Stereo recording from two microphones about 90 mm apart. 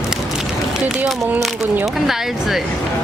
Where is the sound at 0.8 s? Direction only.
15° right (ahead or behind).